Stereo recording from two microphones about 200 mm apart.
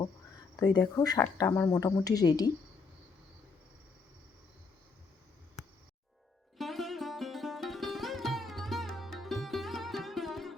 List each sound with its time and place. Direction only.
0.5 s speech: 20° left (ahead or behind)
6.6 s sitar: centre (ahead or behind)